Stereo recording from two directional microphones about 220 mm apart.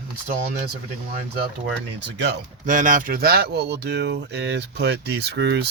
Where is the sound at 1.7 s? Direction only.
50° right (ahead or behind).